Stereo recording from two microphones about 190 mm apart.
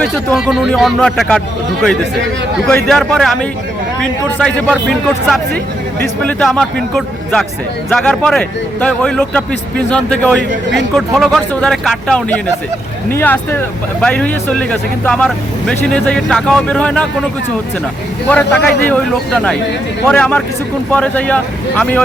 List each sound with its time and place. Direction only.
0.0 s speech: centre (ahead or behind)
2.6 s speech: 5° left (ahead or behind)
10.5 s speech: 70° right (ahead or behind)
10.9 s speech: centre (ahead or behind)
18.3 s speech: 10° left (ahead or behind)